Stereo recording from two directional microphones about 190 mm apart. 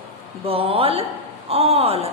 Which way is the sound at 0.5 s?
30° right (ahead or behind).